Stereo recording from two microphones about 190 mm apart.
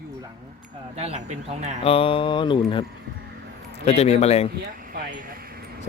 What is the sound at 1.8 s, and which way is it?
Speech, 30° left (ahead or behind).